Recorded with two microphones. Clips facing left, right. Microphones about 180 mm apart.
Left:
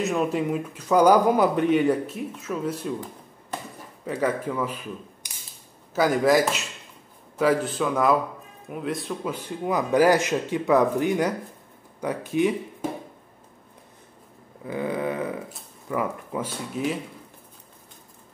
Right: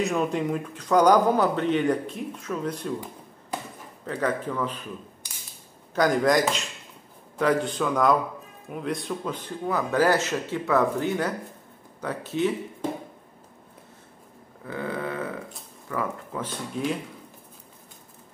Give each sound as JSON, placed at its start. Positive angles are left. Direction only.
{"t": 0.0, "sound": "speech", "side_deg": 0}
{"t": 4.0, "sound": "a man's voice", "side_deg": 10}
{"t": 14.6, "sound": "a sound", "side_deg": 15}
{"t": 15.9, "sound": "speech", "side_deg": 15}